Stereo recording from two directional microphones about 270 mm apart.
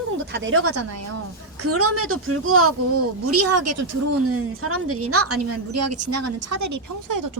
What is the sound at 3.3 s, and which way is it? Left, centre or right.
Speech, right.